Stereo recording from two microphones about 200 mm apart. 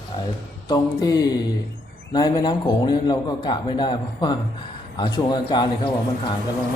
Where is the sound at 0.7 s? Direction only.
20° left (ahead or behind).